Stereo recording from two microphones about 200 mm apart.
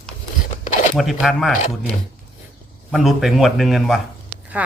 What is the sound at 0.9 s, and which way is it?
Speech, centre (ahead or behind).